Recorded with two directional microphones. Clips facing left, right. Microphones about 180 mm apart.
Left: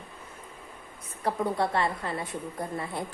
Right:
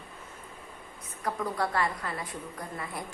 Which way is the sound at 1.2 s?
25° left (ahead or behind).